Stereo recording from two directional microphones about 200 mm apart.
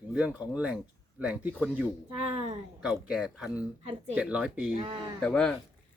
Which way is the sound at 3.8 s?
30° right (ahead or behind).